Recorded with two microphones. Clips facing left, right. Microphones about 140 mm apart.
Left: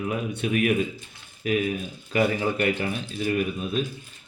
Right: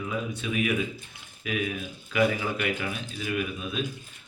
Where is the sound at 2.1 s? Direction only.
40° left (ahead or behind).